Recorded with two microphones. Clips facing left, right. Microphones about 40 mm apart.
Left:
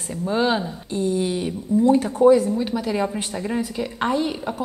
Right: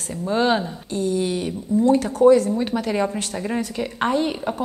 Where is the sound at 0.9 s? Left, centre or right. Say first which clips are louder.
Even; left.